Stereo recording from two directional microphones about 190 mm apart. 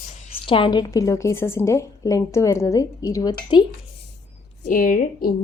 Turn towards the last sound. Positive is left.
turn(degrees=45)  # may be behind; listen again after turning